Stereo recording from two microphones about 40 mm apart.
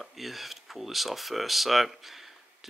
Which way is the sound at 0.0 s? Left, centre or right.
Centre.